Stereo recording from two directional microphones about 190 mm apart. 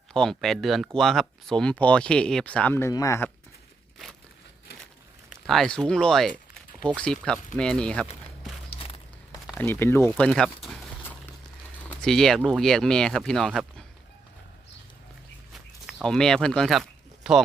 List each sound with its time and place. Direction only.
0.1 s speech: 5° left (ahead or behind)
5.3 s speech: centre (ahead or behind)
8.7 s walk: 30° left (ahead or behind)
9.6 s speech: 10° left (ahead or behind)
11.9 s a sound: centre (ahead or behind)
12.5 s speech: centre (ahead or behind)
15.5 s a sound: centre (ahead or behind)